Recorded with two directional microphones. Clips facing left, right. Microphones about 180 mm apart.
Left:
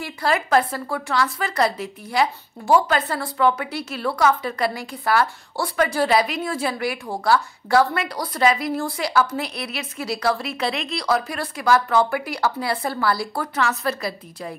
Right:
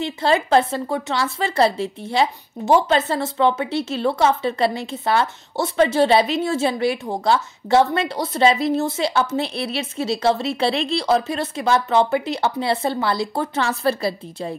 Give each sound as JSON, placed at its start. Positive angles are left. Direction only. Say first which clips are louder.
{"t": 0.0, "sound": "speech", "louder": "right 4 dB", "side_deg": -25}